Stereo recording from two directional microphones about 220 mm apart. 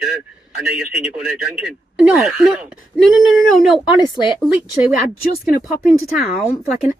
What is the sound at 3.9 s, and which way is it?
Speech, 20° left (ahead or behind).